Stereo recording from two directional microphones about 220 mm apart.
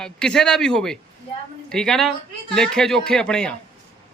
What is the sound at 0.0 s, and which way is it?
Speech, 5° left (ahead or behind).